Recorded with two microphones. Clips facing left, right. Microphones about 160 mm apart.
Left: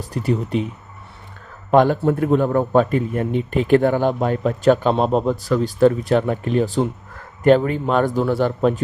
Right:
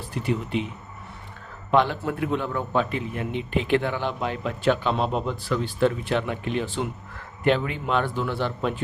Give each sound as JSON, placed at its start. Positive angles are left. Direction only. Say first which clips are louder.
{"t": 0.0, "sound": "a man's voice", "louder": "left 5 dB", "side_deg": 40}
{"t": 1.7, "sound": "a man's voice", "louder": "left 7 dB", "side_deg": 45}